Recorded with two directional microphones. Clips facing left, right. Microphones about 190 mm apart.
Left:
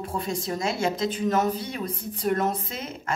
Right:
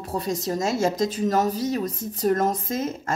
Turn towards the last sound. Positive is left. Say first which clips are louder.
# right 8 dB
turn(degrees=-45)  # may be behind; listen again after turning